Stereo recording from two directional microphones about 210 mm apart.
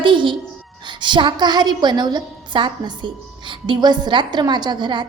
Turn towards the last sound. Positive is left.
turn(degrees=-20)  # may be behind; listen again after turning